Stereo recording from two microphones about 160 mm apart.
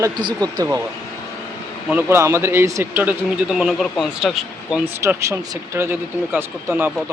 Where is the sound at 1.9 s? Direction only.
15° right (ahead or behind).